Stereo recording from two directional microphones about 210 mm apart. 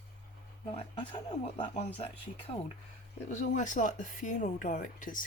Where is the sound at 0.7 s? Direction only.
25° left (ahead or behind).